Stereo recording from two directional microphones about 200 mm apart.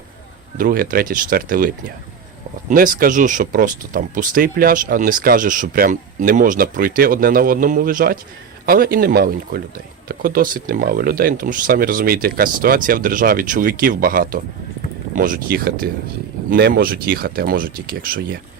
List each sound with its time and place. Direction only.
0.5 s speech: 45° right (ahead or behind)